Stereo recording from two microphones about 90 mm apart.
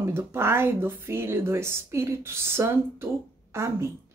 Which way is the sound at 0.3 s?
25° right (ahead or behind).